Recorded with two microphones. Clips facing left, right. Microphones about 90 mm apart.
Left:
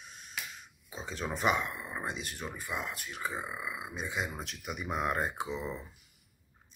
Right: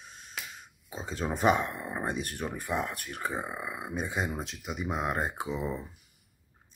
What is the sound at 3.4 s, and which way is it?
Speech, 35° right (ahead or behind).